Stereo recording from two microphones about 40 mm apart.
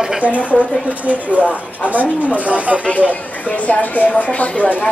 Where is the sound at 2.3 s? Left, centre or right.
Right.